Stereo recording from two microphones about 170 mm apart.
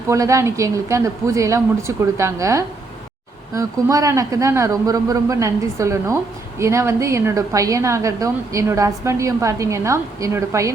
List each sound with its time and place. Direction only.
0.1 s a woman's voice: 20° right (ahead or behind)